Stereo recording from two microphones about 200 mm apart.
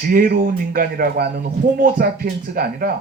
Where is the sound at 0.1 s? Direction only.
50° right (ahead or behind).